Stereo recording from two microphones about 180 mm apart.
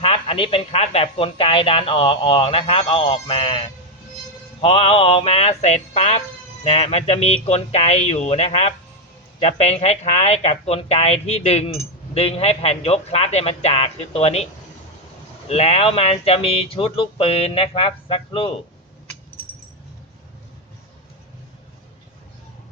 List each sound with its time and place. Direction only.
0.0 s speech: 30° left (ahead or behind)
15.4 s speech: 35° left (ahead or behind)